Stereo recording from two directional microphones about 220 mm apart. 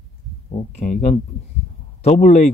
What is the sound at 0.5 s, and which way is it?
A man's voice, 30° left (ahead or behind).